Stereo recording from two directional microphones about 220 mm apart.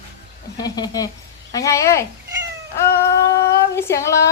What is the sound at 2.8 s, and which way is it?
Female singing, 10° left (ahead or behind).